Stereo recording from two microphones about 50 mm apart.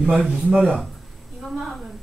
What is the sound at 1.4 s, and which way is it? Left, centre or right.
Speech, centre.